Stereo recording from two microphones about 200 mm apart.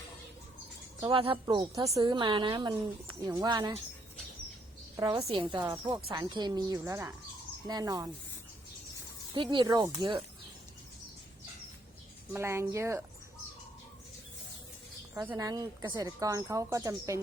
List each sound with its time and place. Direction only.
1.0 s speech: 25° right (ahead or behind)
4.9 s speech: 20° right (ahead or behind)
9.3 s speech: 25° right (ahead or behind)
12.3 s speech: 10° right (ahead or behind)
15.1 s speech: 15° right (ahead or behind)